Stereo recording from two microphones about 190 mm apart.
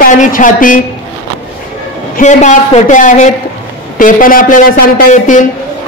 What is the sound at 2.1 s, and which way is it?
A woman's voice, 40° left (ahead or behind).